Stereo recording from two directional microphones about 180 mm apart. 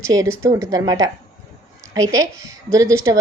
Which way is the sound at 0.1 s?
20° right (ahead or behind).